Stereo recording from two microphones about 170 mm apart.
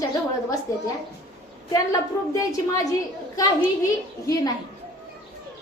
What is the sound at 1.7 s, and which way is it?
A woman's voice, 20° left (ahead or behind).